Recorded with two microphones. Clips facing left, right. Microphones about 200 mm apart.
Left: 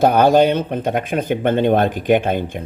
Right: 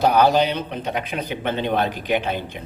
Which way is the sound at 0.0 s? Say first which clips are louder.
Left 4 dB; 50° left (ahead or behind).